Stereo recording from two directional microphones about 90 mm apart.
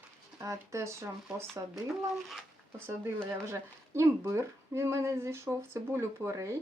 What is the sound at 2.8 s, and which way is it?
Speech, 30° right (ahead or behind).